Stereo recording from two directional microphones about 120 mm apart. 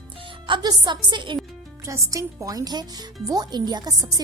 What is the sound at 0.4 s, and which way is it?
Speech, 40° right (ahead or behind).